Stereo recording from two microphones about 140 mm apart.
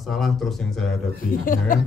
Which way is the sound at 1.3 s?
80° left.